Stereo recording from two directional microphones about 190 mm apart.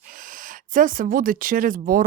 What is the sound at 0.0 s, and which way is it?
Speech, 45° right (ahead or behind).